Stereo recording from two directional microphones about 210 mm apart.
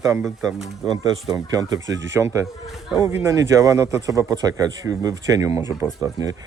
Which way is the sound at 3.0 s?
15° right (ahead or behind).